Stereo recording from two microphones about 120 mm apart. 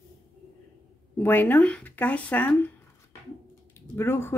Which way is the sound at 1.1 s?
15° left (ahead or behind).